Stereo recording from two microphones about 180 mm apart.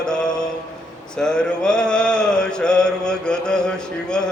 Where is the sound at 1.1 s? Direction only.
5° left (ahead or behind).